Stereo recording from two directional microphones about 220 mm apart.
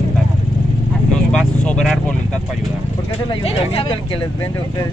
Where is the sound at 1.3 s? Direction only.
5° left (ahead or behind).